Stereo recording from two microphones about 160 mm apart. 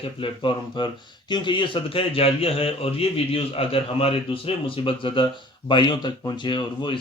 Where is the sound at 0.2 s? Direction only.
30° left (ahead or behind).